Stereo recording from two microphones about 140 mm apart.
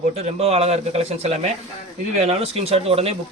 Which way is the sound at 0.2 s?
45° right (ahead or behind).